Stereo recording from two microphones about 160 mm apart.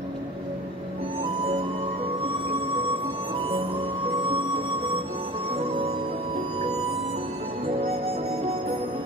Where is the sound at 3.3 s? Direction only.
35° right (ahead or behind).